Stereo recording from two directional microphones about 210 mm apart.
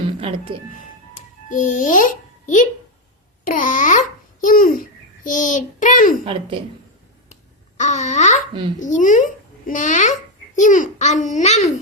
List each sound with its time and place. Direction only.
0.2 s speech: 25° right (ahead or behind)
1.1 s babbling: 35° left (ahead or behind)
3.4 s a child's voice: 40° left (ahead or behind)
7.8 s a child's voice: 35° left (ahead or behind)